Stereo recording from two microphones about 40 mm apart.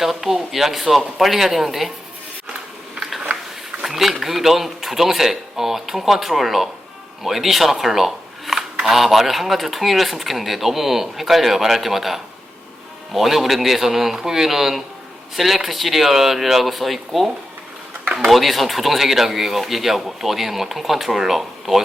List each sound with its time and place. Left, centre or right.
0.0 s speech: centre
3.2 s a sound: right
3.8 s speech: centre